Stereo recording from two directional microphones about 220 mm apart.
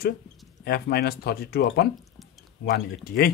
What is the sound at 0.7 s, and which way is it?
Speech, 45° left (ahead or behind).